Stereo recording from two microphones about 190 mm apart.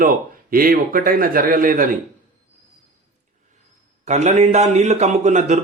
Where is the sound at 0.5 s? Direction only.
50° right (ahead or behind).